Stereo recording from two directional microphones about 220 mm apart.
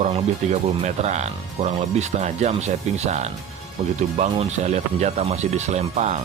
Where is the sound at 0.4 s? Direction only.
35° right (ahead or behind).